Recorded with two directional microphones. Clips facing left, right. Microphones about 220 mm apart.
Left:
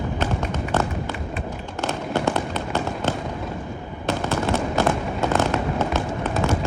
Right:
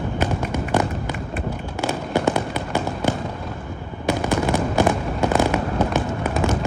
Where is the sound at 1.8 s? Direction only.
10° right (ahead or behind).